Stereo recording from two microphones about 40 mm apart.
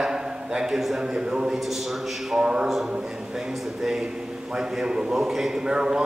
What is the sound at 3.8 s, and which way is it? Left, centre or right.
A man's voice, centre.